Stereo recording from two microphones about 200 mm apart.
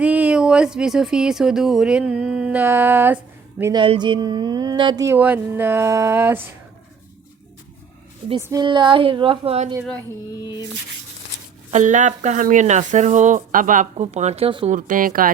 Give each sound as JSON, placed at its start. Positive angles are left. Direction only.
{"t": 0.0, "sound": "speech", "side_deg": -5}
{"t": 3.6, "sound": "speech", "side_deg": -20}
{"t": 8.4, "sound": "a woman's voice", "side_deg": -15}
{"t": 10.4, "sound": "music", "side_deg": 20}
{"t": 11.7, "sound": "speech", "side_deg": -40}
{"t": 14.7, "sound": "speech", "side_deg": -40}